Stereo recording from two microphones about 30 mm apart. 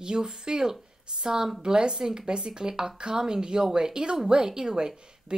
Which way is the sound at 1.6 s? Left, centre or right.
Right.